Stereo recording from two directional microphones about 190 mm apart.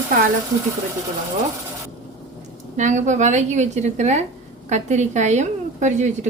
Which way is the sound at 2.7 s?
40° right (ahead or behind).